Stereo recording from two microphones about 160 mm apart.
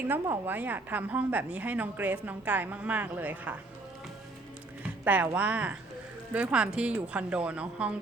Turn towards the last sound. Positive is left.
turn(degrees=-5)  # may be behind; listen again after turning